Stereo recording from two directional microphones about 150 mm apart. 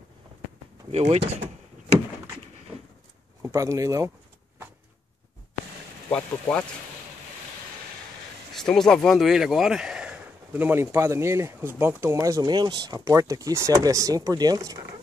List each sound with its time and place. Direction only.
0.9 s speech: 45° right (ahead or behind)
3.4 s speech: 20° right (ahead or behind)
6.1 s speech: 5° left (ahead or behind)
8.5 s speech: 5° left (ahead or behind); by 14.8 s 25° right (ahead or behind)